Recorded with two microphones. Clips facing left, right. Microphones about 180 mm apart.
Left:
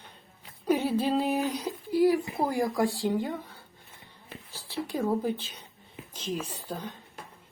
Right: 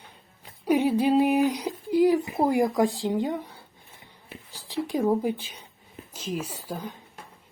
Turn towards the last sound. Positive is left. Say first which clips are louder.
# right 2 dB
turn(degrees=-10)  # may be behind; listen again after turning